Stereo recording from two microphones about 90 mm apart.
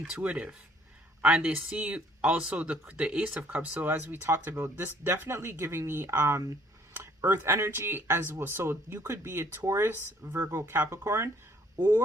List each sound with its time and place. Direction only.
0.1 s speech: 15° right (ahead or behind)